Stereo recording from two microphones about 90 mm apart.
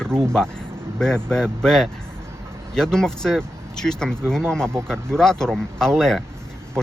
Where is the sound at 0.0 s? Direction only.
5° left (ahead or behind).